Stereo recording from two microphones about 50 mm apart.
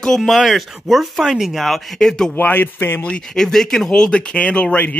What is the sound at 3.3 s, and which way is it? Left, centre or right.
Speech, centre.